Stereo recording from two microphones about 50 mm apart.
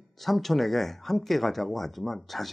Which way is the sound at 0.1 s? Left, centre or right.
Centre.